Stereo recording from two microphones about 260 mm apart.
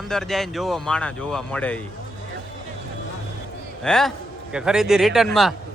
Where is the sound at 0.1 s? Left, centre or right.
Centre.